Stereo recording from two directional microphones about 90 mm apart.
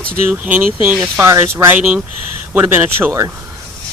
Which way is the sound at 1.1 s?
30° right (ahead or behind).